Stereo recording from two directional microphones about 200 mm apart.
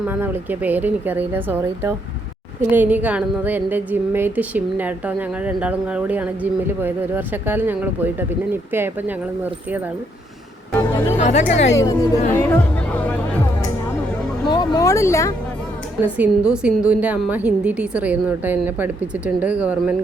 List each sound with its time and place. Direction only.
0.0 s a woman's voice: 10° right (ahead or behind)
10.7 s music: 10° left (ahead or behind)
11.2 s speech: 35° left (ahead or behind)
11.7 s speech: 15° left (ahead or behind)
14.4 s speech: 20° left (ahead or behind)
16.1 s a woman's voice: 5° right (ahead or behind)